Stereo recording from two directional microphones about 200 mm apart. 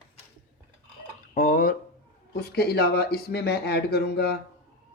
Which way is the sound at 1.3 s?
40° left (ahead or behind).